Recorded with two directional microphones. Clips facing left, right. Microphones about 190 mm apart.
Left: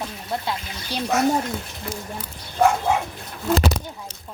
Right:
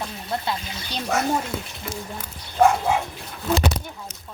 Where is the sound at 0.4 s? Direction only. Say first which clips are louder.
Even; 10° left (ahead or behind).